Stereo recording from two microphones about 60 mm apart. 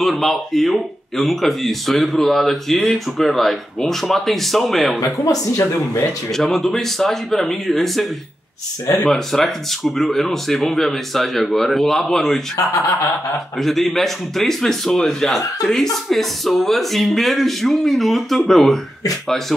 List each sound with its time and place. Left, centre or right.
0.0 s speech: centre
5.0 s speech: left
5.6 s speech: left
6.3 s speech: centre
13.6 s speech: centre